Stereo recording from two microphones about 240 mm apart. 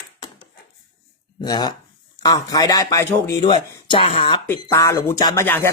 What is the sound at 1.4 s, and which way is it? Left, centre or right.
Speech, centre.